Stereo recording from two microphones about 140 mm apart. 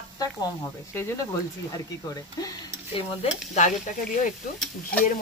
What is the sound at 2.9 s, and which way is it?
Speech, 40° left (ahead or behind).